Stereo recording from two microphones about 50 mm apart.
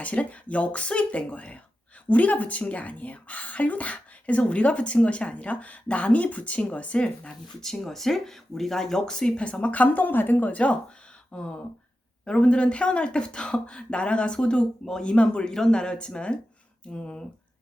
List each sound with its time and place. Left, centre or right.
0.0 s a woman's voice: left
7.6 s a woman's voice: centre